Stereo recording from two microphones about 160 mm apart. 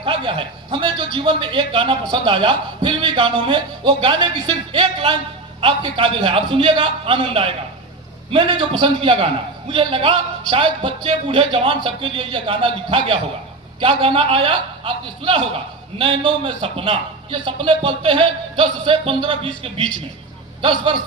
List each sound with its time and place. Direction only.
0.0 s a man's voice: 30° right (ahead or behind)
20.6 s a man's voice: 30° right (ahead or behind)